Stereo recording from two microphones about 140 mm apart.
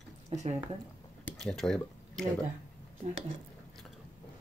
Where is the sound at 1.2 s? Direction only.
5° left (ahead or behind).